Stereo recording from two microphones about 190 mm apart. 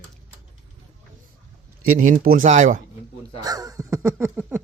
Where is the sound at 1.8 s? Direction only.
45° right (ahead or behind).